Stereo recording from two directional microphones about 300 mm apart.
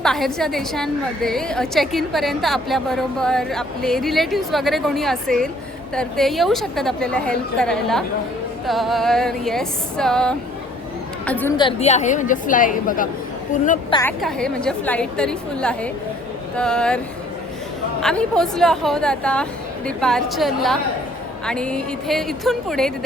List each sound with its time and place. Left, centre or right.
0.0 s a woman's voice: centre; by 13.1 s left
14.2 s a woman's voice: centre
18.0 s a woman's voice: centre